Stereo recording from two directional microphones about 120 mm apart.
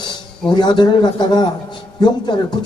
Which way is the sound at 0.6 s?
40° left (ahead or behind).